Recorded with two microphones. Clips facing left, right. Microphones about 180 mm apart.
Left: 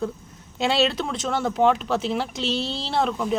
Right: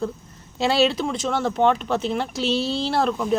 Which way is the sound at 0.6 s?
Centre (ahead or behind).